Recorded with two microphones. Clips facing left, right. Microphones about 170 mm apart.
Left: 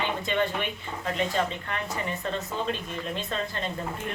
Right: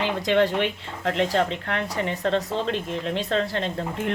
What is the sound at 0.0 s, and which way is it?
Speech, 80° right.